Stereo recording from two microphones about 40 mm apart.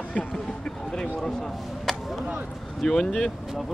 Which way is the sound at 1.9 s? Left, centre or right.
Centre.